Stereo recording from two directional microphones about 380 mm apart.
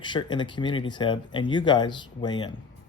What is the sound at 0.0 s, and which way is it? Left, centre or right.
Speech, centre.